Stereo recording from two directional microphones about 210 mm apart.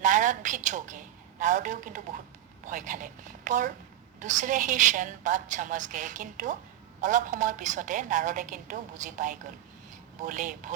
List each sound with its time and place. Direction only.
0.0 s a woman's voice: 35° right (ahead or behind)